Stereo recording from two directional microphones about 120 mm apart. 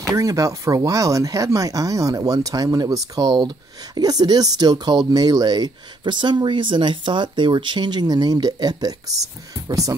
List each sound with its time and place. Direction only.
0.1 s speech: 30° right (ahead or behind)